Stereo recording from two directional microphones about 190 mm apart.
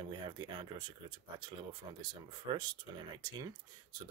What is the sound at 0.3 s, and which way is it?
Speech, 20° right (ahead or behind).